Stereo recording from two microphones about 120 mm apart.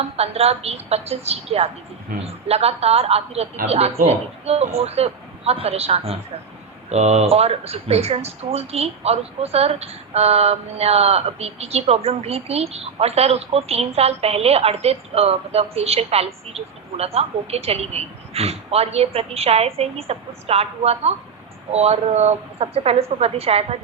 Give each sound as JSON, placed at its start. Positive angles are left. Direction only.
{"t": 0.2, "sound": "speech", "side_deg": -60}